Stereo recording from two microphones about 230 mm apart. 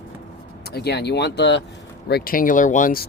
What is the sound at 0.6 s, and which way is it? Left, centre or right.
Speech, left.